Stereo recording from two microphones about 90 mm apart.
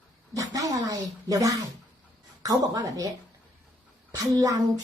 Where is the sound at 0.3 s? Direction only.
40° right (ahead or behind).